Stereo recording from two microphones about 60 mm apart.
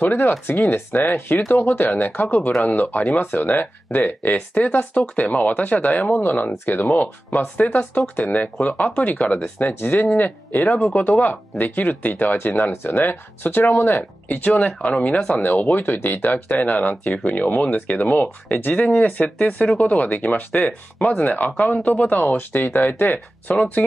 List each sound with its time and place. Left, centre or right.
0.0 s speech: left
1.6 s speech: left
4.6 s speech: centre; by 14.0 s left
14.3 s speech: left
15.0 s speech: centre
15.7 s speech: left